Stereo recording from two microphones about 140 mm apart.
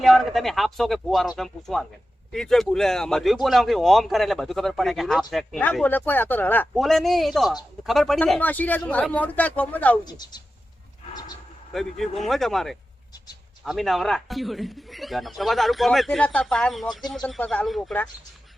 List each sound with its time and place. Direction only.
0.0 s a man's voice: centre (ahead or behind)
5.8 s speech: 15° left (ahead or behind)
6.7 s a man's voice: centre (ahead or behind)
10.0 s speech: 30° left (ahead or behind)
11.7 s a man's voice: centre (ahead or behind)